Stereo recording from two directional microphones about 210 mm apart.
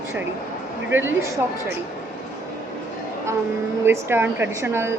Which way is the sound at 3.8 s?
10° right (ahead or behind).